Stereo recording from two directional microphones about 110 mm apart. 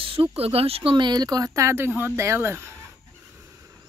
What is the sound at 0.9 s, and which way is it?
Speech, 40° right (ahead or behind).